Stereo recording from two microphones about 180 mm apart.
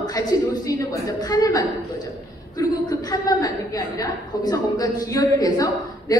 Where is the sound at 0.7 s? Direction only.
20° left (ahead or behind).